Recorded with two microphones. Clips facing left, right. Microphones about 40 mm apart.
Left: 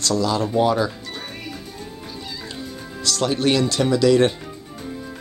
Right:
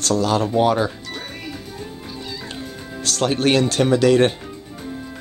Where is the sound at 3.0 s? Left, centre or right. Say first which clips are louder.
Right 1 dB; right.